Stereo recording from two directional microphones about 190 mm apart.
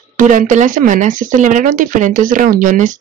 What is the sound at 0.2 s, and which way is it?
Speech, 45° right (ahead or behind).